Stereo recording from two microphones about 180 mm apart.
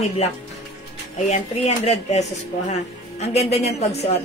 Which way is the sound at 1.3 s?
40° left (ahead or behind).